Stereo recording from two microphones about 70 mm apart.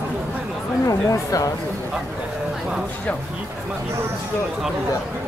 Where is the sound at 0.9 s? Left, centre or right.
Left.